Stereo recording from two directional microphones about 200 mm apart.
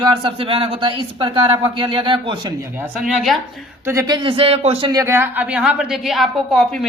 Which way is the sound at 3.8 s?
15° right (ahead or behind).